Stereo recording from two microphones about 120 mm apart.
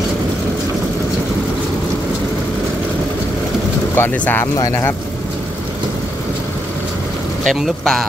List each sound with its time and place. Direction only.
3.9 s speech: 15° left (ahead or behind)
4.6 s speech: 30° left (ahead or behind)
7.4 s speech: centre (ahead or behind)